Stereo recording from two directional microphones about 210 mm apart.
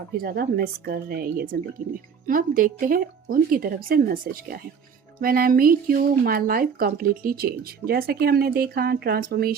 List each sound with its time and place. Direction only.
0.1 s speech: 45° right (ahead or behind)